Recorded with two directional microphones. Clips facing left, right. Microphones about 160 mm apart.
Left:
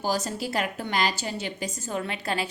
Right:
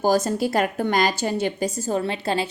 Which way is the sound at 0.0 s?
50° right (ahead or behind).